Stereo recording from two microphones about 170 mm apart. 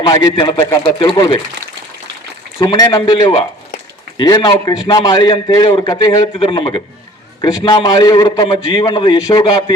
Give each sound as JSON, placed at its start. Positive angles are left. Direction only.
{"t": 0.1, "sound": "a man's voice", "side_deg": 25}
{"t": 2.6, "sound": "a man's voice", "side_deg": 25}